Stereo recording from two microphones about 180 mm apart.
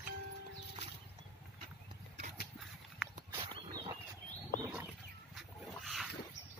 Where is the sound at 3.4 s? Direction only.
25° right (ahead or behind).